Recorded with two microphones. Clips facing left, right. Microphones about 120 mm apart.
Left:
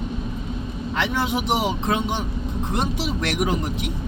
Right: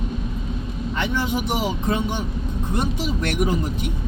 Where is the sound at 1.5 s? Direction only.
25° left (ahead or behind).